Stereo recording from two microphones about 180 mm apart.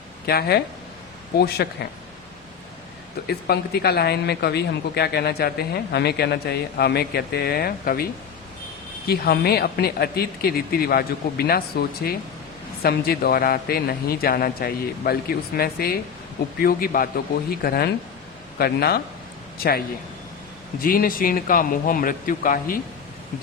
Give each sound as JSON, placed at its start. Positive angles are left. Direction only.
{"t": 0.3, "sound": "speech", "side_deg": 60}
{"t": 3.2, "sound": "speech", "side_deg": 60}
{"t": 9.0, "sound": "a man's voice", "side_deg": 60}
{"t": 20.8, "sound": "speech", "side_deg": 50}